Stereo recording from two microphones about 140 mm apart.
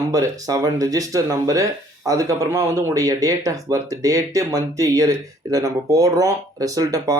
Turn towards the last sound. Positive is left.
turn(degrees=-25)  # may be behind; listen again after turning